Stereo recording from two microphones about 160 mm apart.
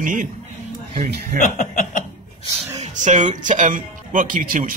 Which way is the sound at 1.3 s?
60° left (ahead or behind).